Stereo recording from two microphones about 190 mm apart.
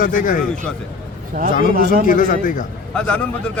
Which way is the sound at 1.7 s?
50° right (ahead or behind).